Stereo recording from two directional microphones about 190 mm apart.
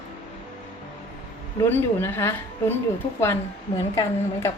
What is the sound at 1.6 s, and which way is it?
A woman's voice, 10° left (ahead or behind).